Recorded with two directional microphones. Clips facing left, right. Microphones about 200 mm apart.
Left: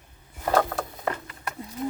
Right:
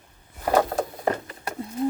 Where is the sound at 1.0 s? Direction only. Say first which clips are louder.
Right 4 dB; 30° right (ahead or behind).